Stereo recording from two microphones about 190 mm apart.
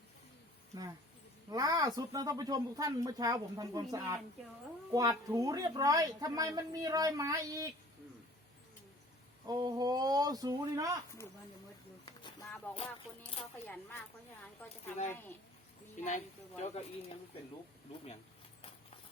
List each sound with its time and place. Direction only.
1.5 s a woman's voice: 20° right (ahead or behind)
9.5 s a woman's voice: 20° right (ahead or behind)
14.6 s speech: 10° left (ahead or behind)
16.0 s a woman's voice: 40° left (ahead or behind)